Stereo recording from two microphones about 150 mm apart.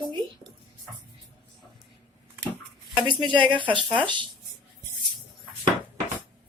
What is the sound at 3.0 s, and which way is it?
Speech, 30° right (ahead or behind).